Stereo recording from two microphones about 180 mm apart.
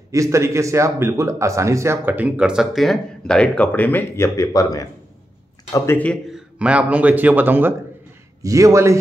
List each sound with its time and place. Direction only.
0.1 s a man's voice: 15° right (ahead or behind)